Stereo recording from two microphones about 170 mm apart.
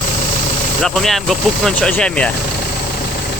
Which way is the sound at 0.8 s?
Centre (ahead or behind).